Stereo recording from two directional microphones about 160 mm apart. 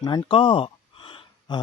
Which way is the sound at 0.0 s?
25° left (ahead or behind).